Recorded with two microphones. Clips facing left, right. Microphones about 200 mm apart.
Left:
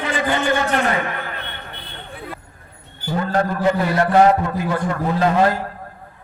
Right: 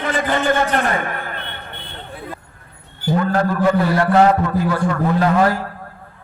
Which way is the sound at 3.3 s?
25° left (ahead or behind).